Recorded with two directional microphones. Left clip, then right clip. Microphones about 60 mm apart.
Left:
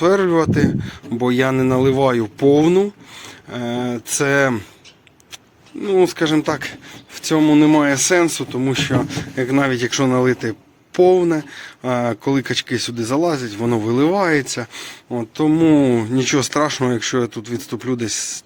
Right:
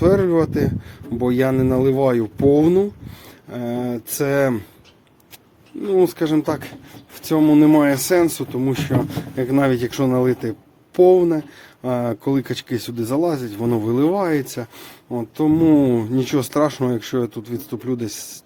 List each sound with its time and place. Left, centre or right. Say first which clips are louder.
0.0 s speech: left 1 dB; centre
5.8 s speech: left 2 dB; centre
7.1 s speech: left 1 dB; right
8.1 s speech: left 1 dB; right
8.5 s speech: left 2 dB; centre
9.0 s speech: left 2 dB; right
10.1 s speech: left 1 dB; centre
10.9 s speech: even; centre